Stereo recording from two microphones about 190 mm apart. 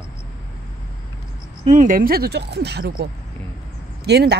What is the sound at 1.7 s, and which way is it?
Speech, 45° right (ahead or behind).